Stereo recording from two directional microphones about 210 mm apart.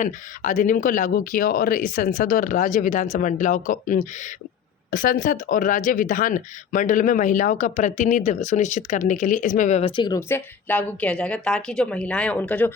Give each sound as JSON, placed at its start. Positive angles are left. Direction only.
{"t": 0.0, "sound": "speech", "side_deg": 35}